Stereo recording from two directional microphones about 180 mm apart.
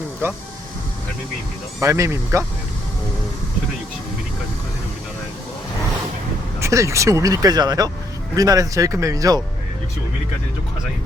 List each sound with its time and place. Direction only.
1.8 s speech: 15° right (ahead or behind)
6.6 s speech: 15° right (ahead or behind)